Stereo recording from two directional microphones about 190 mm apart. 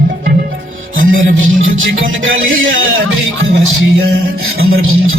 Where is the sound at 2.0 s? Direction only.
90° right.